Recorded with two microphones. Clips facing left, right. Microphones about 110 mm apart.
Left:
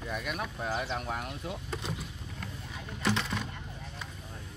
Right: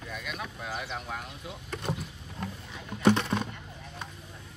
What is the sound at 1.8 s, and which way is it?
Vehicle, 55° right (ahead or behind).